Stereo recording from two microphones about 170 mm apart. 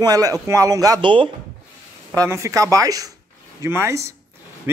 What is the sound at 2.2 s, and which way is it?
Speech, 20° right (ahead or behind).